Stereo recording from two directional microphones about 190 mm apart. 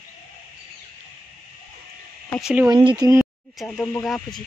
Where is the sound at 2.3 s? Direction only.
5° right (ahead or behind).